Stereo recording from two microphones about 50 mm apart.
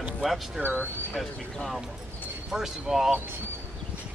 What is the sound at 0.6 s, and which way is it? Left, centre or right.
Speech, right.